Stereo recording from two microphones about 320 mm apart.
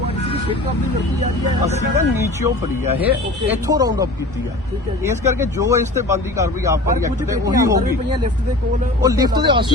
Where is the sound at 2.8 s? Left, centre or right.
Centre.